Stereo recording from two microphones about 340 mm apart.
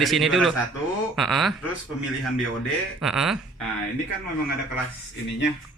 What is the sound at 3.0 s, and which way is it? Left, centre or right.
Speech, centre.